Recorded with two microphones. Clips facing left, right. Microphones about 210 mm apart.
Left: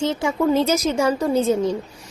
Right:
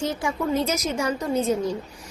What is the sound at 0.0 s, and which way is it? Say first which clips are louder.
A woman's voice: left 6 dB; 25° left (ahead or behind).